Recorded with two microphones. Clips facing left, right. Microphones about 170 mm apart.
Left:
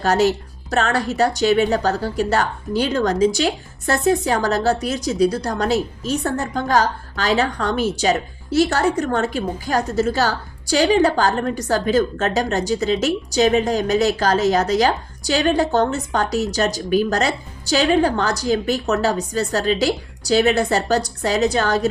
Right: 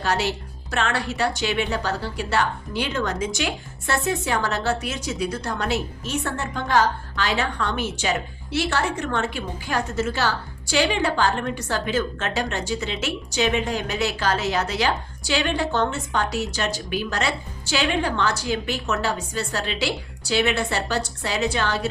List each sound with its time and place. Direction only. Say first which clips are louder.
0.0 s speech: left 7 dB; 45° left (ahead or behind)